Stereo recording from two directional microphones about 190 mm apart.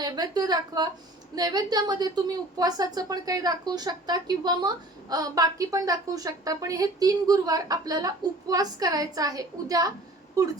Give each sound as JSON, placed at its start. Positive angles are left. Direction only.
{"t": 0.0, "sound": "a woman's voice", "side_deg": -20}